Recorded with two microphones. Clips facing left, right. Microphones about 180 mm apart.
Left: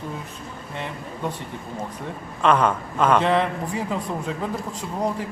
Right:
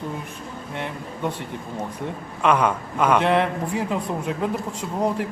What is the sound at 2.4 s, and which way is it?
A man's voice, 10° right (ahead or behind).